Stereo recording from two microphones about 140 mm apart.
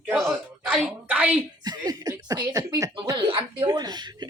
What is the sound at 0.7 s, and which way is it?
Speech, 5° right (ahead or behind).